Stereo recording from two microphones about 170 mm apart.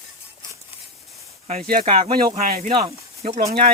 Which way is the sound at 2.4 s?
60° right (ahead or behind).